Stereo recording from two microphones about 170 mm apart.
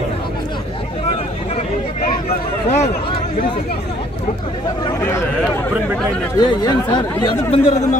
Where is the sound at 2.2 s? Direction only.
40° left (ahead or behind).